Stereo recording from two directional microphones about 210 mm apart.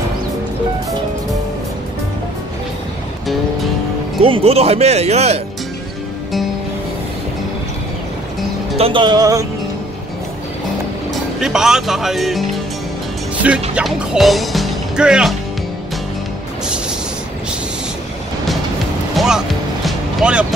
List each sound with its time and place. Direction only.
4.2 s speech: 25° right (ahead or behind)
8.7 s speech: 25° right (ahead or behind)
11.4 s speech: centre (ahead or behind)
19.1 s music: centre (ahead or behind)